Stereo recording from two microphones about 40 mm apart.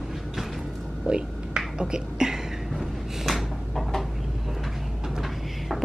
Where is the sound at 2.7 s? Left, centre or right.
Centre.